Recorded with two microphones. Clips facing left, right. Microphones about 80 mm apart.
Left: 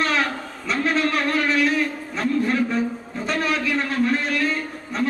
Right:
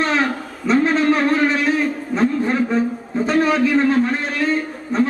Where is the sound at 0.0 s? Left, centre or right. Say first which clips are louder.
Right 3 dB; right.